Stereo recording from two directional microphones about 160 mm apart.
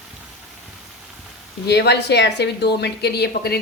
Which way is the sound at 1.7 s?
90° left.